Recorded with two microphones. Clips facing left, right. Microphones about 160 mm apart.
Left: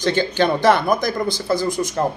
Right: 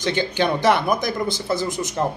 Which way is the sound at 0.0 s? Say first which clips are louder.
Left 3 dB; 15° right (ahead or behind).